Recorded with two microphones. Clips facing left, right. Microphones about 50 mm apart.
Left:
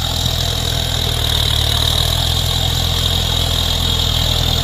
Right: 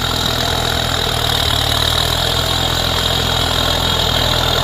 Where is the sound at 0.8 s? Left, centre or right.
Right.